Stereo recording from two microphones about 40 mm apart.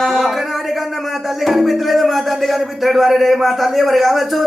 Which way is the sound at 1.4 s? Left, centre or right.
Centre.